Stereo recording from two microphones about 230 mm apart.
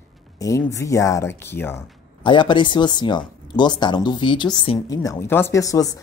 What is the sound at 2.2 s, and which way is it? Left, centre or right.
Speech, left.